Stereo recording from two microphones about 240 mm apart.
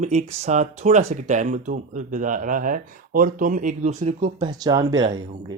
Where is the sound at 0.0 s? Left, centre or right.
Right.